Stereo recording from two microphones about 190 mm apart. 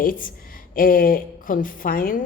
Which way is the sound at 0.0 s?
45° left (ahead or behind).